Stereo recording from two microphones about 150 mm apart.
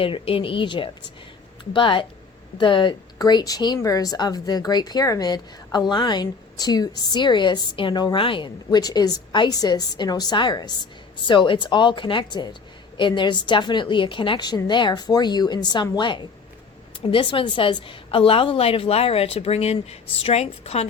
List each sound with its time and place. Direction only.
0.0 s a woman's voice: 40° left (ahead or behind)